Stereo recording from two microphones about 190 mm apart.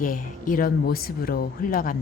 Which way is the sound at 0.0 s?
45° left (ahead or behind).